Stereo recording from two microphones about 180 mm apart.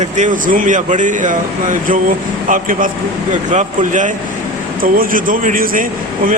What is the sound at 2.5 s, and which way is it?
A man's voice, 50° right (ahead or behind).